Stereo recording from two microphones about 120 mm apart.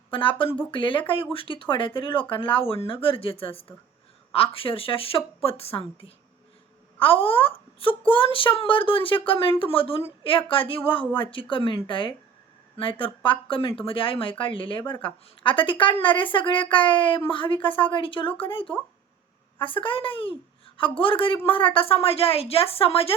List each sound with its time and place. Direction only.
0.1 s speech: 45° left (ahead or behind)